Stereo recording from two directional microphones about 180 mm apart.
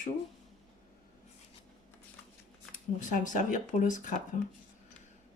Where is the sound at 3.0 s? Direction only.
45° left (ahead or behind).